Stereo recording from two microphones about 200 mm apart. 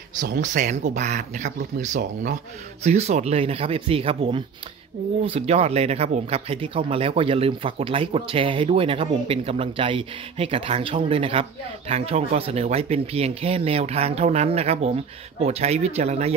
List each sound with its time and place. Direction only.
0.2 s speech: 40° right (ahead or behind)